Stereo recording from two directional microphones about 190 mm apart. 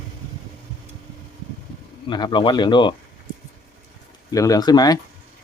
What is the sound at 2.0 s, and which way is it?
Speech, 25° left (ahead or behind).